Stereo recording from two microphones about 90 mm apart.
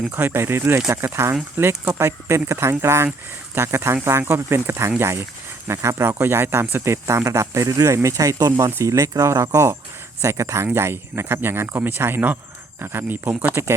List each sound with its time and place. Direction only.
0.1 s speech: 20° right (ahead or behind)